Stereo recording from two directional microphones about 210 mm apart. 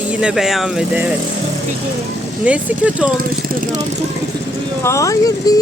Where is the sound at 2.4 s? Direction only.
5° right (ahead or behind).